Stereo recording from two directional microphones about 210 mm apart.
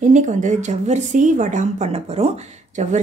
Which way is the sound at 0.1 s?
35° right (ahead or behind).